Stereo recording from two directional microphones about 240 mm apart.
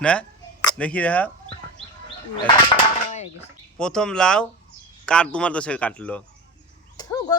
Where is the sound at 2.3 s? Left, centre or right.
Left.